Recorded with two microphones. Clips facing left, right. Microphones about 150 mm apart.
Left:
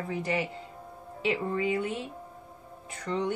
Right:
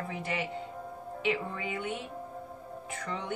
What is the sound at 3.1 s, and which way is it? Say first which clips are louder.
Speech: left 7 dB; 35° left (ahead or behind).